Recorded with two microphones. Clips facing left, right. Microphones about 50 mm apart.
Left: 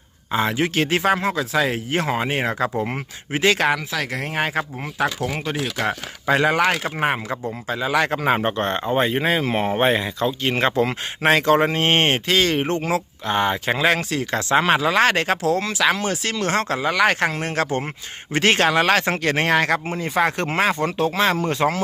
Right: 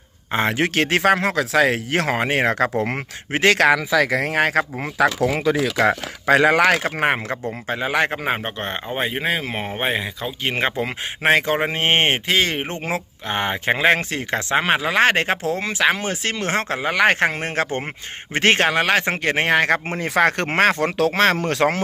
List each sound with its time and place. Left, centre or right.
0.3 s speech: right
2.8 s speech: right
5.9 s speech: right
6.8 s speech: right
7.7 s speech: right
8.4 s speech: centre
15.0 s speech: right
18.7 s speech: right
19.9 s speech: right
21.1 s speech: right